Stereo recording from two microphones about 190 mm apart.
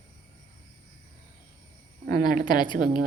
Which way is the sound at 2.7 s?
45° right (ahead or behind).